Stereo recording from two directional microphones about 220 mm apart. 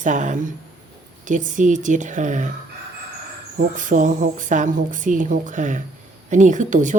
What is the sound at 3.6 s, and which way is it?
Speech, 35° right (ahead or behind).